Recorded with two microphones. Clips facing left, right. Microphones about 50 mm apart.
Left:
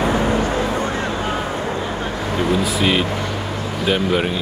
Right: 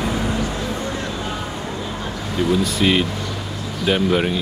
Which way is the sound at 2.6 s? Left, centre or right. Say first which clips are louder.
Even; centre.